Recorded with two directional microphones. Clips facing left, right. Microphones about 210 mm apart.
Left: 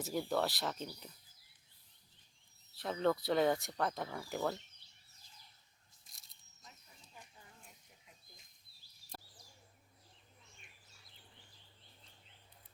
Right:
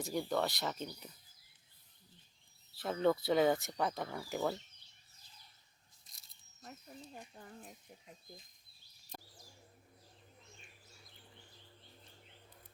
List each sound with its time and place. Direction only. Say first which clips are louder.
0.0 s speech: even; 5° left (ahead or behind)
2.7 s speech: right 2 dB; centre (ahead or behind)
6.1 s biting: left 1 dB; centre (ahead or behind)
6.6 s a sound: right 12 dB; 55° right (ahead or behind)